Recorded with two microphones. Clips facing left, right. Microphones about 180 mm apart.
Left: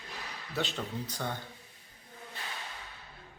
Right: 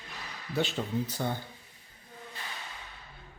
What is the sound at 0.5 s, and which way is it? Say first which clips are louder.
Speech: right 5 dB; 5° right (ahead or behind).